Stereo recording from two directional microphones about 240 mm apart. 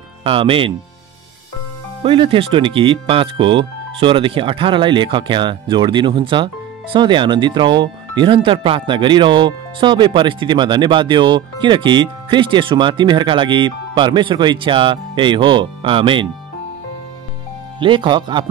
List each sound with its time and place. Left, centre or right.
0.2 s speech: right
2.0 s speech: right
17.7 s speech: centre